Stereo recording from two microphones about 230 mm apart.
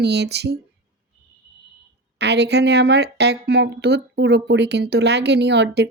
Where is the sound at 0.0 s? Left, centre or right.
Right.